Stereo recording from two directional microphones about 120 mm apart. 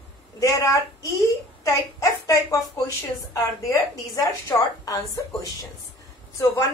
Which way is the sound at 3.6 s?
25° left (ahead or behind).